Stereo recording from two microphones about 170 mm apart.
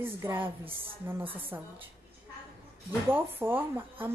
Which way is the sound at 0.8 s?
30° right (ahead or behind).